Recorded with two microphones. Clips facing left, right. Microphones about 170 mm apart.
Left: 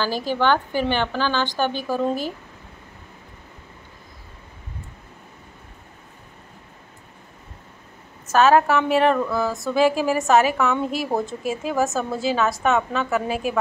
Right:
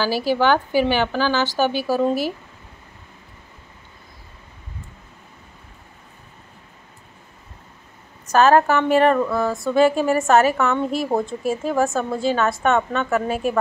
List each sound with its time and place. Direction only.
0.0 s a woman's voice: 10° right (ahead or behind)
8.3 s a woman's voice: centre (ahead or behind)